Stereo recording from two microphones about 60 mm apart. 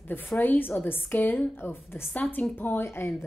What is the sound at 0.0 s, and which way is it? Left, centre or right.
A woman's voice, left.